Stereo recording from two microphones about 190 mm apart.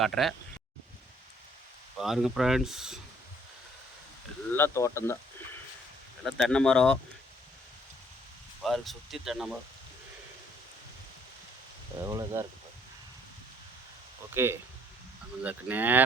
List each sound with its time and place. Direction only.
0.0 s speech: centre (ahead or behind)
2.0 s speech: centre (ahead or behind)
4.5 s speech: 15° left (ahead or behind)
6.2 s speech: 5° left (ahead or behind)
8.6 s speech: centre (ahead or behind)
12.0 s speech: 15° right (ahead or behind)
14.3 s speech: 10° right (ahead or behind)